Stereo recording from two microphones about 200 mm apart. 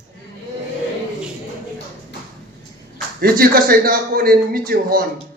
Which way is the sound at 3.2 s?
45° right (ahead or behind).